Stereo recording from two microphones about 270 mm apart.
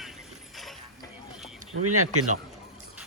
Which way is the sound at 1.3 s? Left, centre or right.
Centre.